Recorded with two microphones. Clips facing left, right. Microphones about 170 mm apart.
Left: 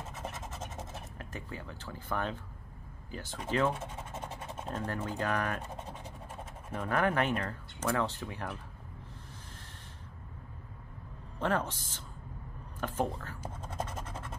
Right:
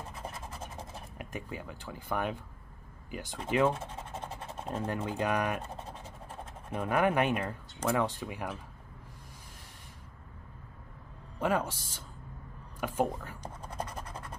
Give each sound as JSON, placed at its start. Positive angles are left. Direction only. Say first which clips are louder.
{"t": 1.1, "sound": "speech", "louder": "right 5 dB", "side_deg": -15}
{"t": 6.7, "sound": "speech", "louder": "right 2 dB", "side_deg": -15}
{"t": 11.3, "sound": "speech", "louder": "right 2 dB", "side_deg": -10}
{"t": 13.5, "sound": "scratch", "louder": "left 1 dB", "side_deg": 25}